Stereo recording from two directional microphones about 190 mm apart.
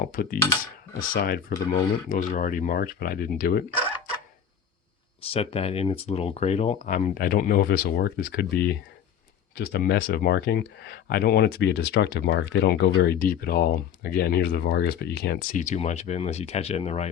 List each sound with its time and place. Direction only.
0.0 s speech: 50° left (ahead or behind)
5.3 s speech: 30° left (ahead or behind)